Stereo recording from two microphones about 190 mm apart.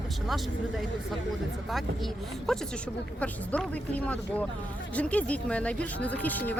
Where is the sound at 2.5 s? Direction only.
Centre (ahead or behind).